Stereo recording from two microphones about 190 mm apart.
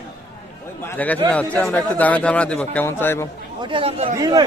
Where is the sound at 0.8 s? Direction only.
10° left (ahead or behind).